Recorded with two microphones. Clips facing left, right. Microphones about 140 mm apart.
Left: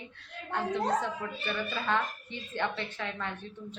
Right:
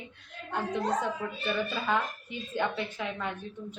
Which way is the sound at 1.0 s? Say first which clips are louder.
Right 2 dB; 10° right (ahead or behind).